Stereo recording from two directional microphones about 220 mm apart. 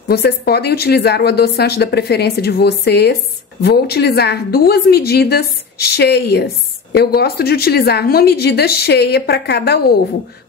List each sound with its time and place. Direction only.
0.1 s a woman's voice: 45° left (ahead or behind)